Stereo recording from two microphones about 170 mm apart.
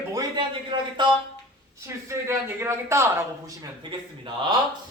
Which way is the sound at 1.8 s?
15° right (ahead or behind).